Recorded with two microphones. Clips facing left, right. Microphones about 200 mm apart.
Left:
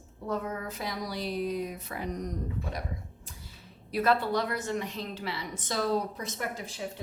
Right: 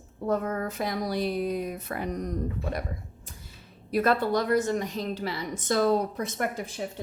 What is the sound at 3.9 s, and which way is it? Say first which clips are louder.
A woman's voice: right 3 dB; 45° right (ahead or behind).